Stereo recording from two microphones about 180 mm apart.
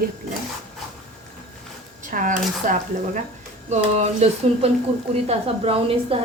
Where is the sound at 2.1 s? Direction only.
50° right (ahead or behind).